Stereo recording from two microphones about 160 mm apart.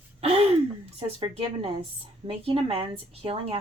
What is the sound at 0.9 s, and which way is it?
Speech, 35° right (ahead or behind).